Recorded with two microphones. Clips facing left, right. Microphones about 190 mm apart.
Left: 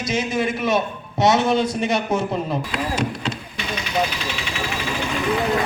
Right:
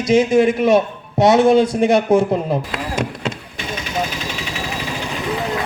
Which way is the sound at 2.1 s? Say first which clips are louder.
Right 6 dB; 50° right (ahead or behind).